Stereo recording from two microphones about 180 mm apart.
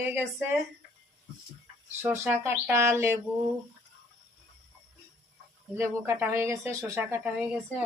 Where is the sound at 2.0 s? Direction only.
15° right (ahead or behind).